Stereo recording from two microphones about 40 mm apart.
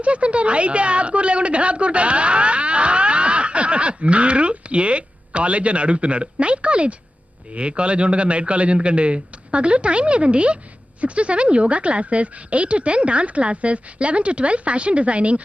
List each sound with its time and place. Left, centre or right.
0.0 s a woman's voice: right